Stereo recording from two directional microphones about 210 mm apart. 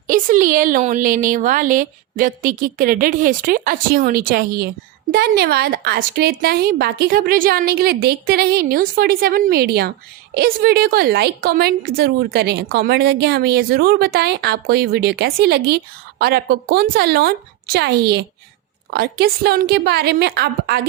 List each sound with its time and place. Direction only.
0.1 s a woman's voice: 40° right (ahead or behind)